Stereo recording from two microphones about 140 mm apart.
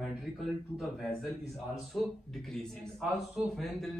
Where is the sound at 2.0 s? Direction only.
Centre (ahead or behind).